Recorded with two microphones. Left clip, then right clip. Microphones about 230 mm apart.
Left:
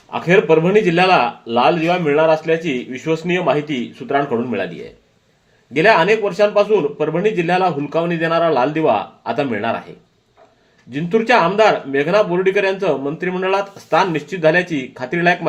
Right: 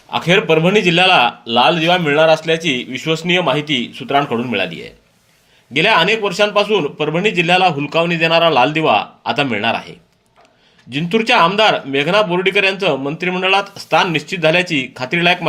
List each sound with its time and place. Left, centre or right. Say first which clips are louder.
0.1 s speech: even; right
1.5 s speech: right 2 dB; right
2.6 s speech: right 2 dB; right
4.2 s a man's voice: right 2 dB; right
10.9 s a man's voice: right 1 dB; right